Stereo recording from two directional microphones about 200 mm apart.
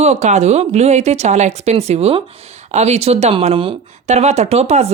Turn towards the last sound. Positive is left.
turn(degrees=-30)  # may be behind; listen again after turning